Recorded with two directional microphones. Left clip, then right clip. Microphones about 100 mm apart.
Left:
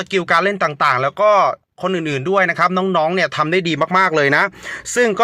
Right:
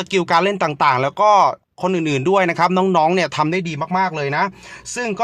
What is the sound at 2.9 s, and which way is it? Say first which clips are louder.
Speech: even; 25° right (ahead or behind).